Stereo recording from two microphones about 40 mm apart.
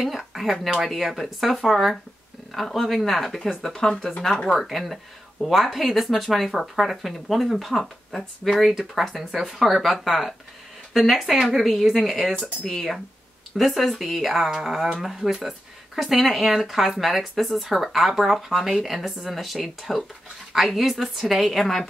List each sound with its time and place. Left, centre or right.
0.0 s speech: centre
3.7 s speech: centre
4.2 s speech: centre